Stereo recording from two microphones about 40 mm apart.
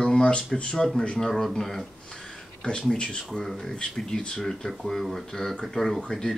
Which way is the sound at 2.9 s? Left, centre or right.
Left.